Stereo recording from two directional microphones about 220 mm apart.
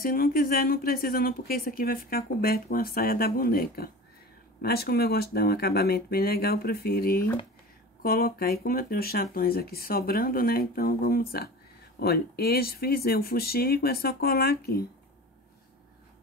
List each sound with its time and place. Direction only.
0.0 s speech: 40° left (ahead or behind)